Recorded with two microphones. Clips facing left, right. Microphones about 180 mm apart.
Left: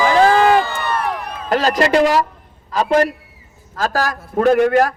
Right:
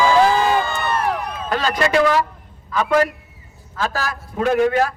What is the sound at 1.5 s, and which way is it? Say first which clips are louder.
Music: left 4 dB; 40° left (ahead or behind).